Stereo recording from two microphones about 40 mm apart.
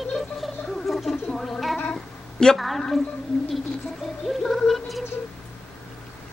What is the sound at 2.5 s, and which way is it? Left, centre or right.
Music, centre.